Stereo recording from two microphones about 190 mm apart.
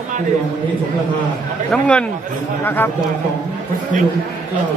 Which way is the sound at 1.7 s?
5° left (ahead or behind).